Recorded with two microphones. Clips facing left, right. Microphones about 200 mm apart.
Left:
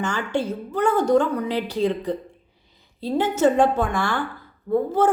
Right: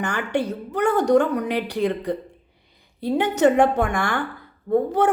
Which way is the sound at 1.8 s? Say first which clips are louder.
Even; 60° right (ahead or behind).